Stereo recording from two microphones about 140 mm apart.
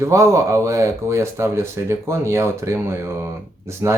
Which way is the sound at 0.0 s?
20° right (ahead or behind).